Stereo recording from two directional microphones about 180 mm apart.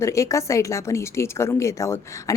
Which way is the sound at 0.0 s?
15° left (ahead or behind).